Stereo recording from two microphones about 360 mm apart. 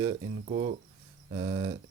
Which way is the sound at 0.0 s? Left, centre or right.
Centre.